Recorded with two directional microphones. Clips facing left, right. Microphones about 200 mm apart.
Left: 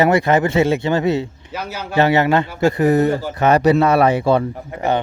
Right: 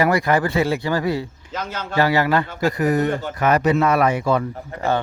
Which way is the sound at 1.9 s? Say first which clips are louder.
Left 3 dB; 25° left (ahead or behind).